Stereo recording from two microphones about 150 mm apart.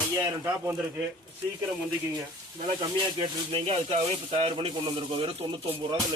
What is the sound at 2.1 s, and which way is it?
Speech, 25° right (ahead or behind).